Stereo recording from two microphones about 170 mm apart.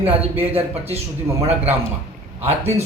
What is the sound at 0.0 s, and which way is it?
Speech, 10° right (ahead or behind).